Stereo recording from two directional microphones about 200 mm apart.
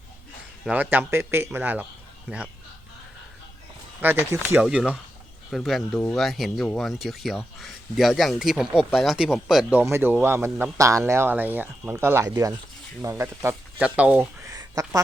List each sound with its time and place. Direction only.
0.6 s a man's voice: 10° right (ahead or behind)
4.0 s a man's voice: 10° right (ahead or behind)